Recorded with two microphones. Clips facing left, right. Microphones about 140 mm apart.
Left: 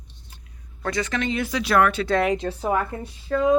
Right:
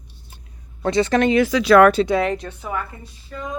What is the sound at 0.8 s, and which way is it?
Speech, 25° right (ahead or behind).